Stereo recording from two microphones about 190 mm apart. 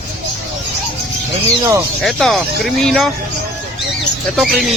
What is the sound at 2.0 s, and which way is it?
Speech, centre (ahead or behind).